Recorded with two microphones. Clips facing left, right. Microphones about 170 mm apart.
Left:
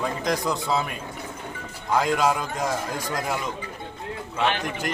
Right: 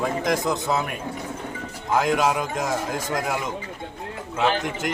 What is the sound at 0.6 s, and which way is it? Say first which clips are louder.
Speech: right 1 dB; 5° right (ahead or behind).